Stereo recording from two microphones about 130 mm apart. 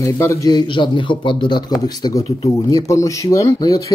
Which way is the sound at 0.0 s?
25° left (ahead or behind).